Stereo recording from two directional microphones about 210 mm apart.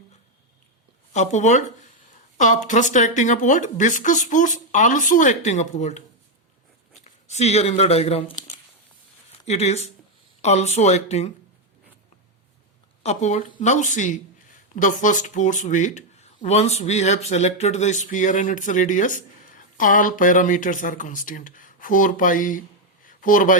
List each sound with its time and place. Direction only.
1.1 s speech: 35° left (ahead or behind)
7.0 s speech: 30° left (ahead or behind)
13.0 s speech: 30° left (ahead or behind)